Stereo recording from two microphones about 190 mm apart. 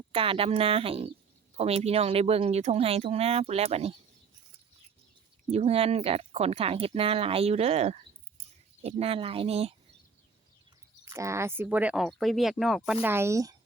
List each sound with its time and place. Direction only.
0.1 s speech: 30° right (ahead or behind)
5.5 s speech: 30° right (ahead or behind)
11.0 s speech: 15° right (ahead or behind)